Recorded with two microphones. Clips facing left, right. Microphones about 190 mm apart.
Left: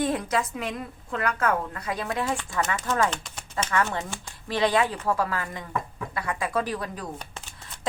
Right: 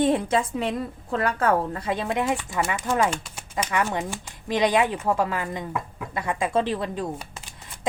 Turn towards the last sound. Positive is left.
turn(degrees=-25)  # may be behind; listen again after turning